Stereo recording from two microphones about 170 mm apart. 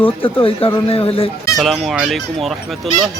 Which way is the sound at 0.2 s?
30° left (ahead or behind).